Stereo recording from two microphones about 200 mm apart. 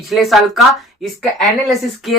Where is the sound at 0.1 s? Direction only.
Centre (ahead or behind).